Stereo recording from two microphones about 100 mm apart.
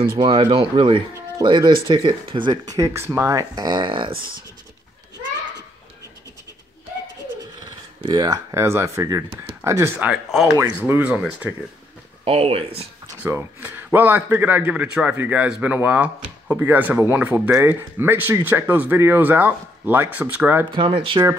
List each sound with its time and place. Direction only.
0.2 s speech: 55° right (ahead or behind)
2.6 s speech: 35° right (ahead or behind)
3.6 s speech: 55° right (ahead or behind)
7.6 s speech: 45° right (ahead or behind)
9.9 s speech: 10° right (ahead or behind)
10.6 s a man's voice: 25° right (ahead or behind)
11.1 s speech: 10° right (ahead or behind)
12.3 s speech: 75° right (ahead or behind)
13.2 s a man's voice: 25° right (ahead or behind)
20.7 s speech: 65° right (ahead or behind)